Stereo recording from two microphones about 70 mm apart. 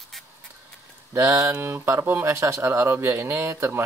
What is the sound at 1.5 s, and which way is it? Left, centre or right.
Speech, right.